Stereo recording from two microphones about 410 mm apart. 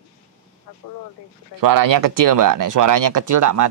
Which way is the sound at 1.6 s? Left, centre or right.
Right.